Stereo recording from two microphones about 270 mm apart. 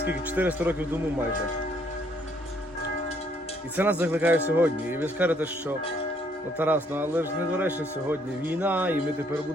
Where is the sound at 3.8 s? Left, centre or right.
Centre.